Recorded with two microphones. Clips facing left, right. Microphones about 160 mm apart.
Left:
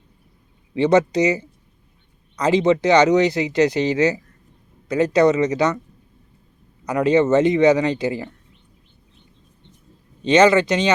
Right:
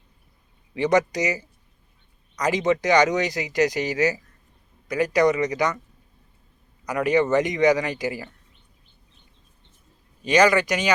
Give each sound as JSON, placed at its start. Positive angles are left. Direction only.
{"t": 0.7, "sound": "speech", "side_deg": 20}
{"t": 6.9, "sound": "speech", "side_deg": 20}
{"t": 10.2, "sound": "speech", "side_deg": 25}